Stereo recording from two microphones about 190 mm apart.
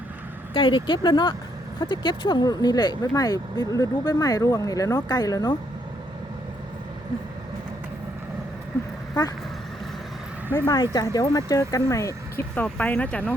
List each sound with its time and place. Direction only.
0.5 s speech: 25° left (ahead or behind)
9.2 s speech: 20° left (ahead or behind)
10.7 s speech: 20° left (ahead or behind)
12.5 s speech: 5° left (ahead or behind)